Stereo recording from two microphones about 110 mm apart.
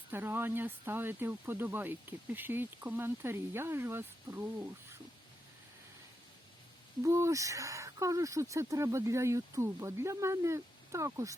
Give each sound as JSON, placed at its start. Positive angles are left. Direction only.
{"t": 0.1, "sound": "speech", "side_deg": -20}
{"t": 7.0, "sound": "speech", "side_deg": -30}